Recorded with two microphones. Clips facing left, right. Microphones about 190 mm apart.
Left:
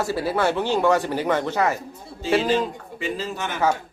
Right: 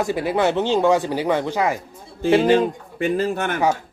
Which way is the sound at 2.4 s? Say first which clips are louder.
Right 6 dB; 55° right (ahead or behind).